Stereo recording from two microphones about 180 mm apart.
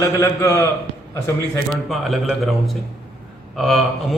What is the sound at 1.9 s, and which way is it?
A man's voice, centre (ahead or behind).